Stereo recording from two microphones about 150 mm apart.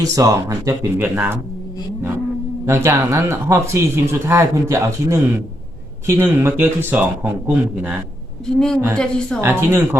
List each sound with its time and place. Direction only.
0.0 s speech: 20° right (ahead or behind)
2.0 s vehicle: 15° right (ahead or behind)
2.6 s speech: 20° right (ahead or behind)
8.5 s a woman's voice: 5° left (ahead or behind)
9.4 s speech: 15° right (ahead or behind)